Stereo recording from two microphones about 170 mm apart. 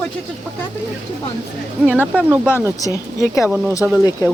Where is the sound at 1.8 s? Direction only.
5° right (ahead or behind).